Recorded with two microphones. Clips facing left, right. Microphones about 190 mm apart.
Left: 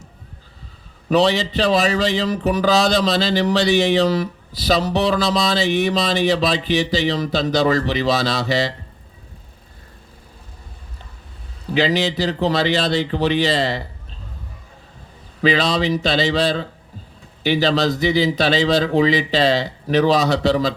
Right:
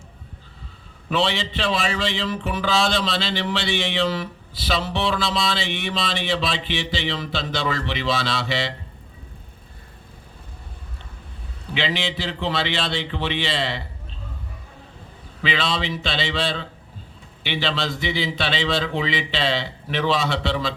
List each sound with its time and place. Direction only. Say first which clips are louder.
1.1 s speech: left 7 dB; 40° left (ahead or behind)
11.7 s speech: left 7 dB; 40° left (ahead or behind)
15.4 s speech: left 7 dB; 40° left (ahead or behind)